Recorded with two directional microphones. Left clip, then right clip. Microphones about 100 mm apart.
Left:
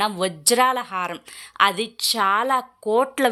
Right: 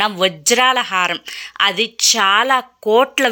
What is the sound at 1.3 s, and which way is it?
Speech, centre (ahead or behind).